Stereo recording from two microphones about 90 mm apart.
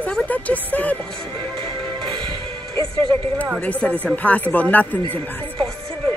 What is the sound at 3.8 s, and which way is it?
Speech, 15° left (ahead or behind).